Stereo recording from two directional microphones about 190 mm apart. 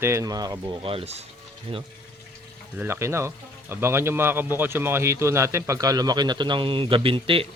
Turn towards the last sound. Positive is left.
turn(degrees=-30)  # may be behind; listen again after turning